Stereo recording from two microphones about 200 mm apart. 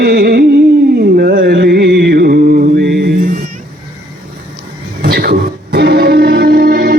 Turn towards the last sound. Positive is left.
turn(degrees=-45)  # may be behind; listen again after turning